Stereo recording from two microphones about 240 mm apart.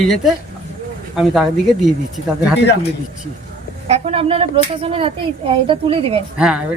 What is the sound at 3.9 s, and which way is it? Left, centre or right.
A woman's voice, right.